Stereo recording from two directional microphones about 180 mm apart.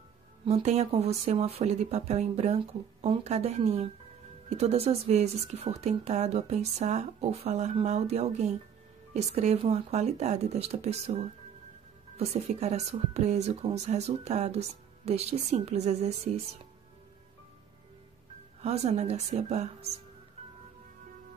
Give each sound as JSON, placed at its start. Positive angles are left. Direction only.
{"t": 0.5, "sound": "a woman's voice", "side_deg": -40}
{"t": 18.6, "sound": "a woman's voice", "side_deg": -35}